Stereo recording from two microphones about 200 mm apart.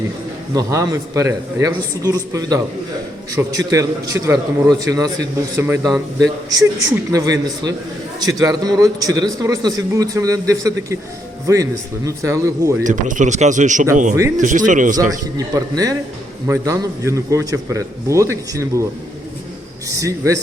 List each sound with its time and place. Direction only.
0.5 s speech: 15° right (ahead or behind)
12.8 s speech: 40° right (ahead or behind)
15.4 s speech: 20° right (ahead or behind)
19.9 s speech: 15° right (ahead or behind)